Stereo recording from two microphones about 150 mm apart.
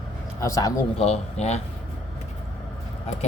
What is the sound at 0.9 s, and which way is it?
Speech, 45° left (ahead or behind).